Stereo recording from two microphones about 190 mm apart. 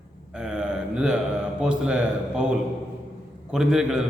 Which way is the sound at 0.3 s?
5° right (ahead or behind).